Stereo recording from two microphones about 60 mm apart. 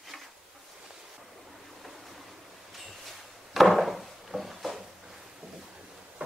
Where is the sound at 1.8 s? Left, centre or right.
Centre.